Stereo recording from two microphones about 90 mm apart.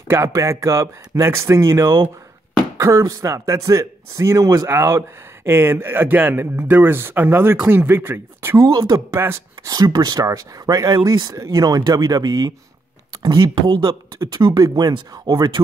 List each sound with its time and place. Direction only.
0.1 s speech: 35° right (ahead or behind)
8.5 s speech: 50° right (ahead or behind)
9.1 s speech: 30° right (ahead or behind)
9.7 s speech: 45° right (ahead or behind)